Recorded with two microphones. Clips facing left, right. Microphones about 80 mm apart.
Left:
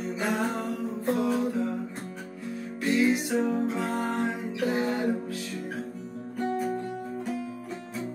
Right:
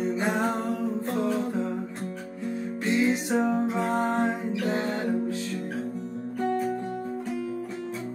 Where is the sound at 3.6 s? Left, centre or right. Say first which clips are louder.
Right 2 dB; centre.